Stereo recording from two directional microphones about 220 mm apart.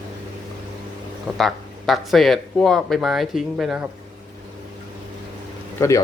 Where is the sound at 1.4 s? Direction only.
Centre (ahead or behind).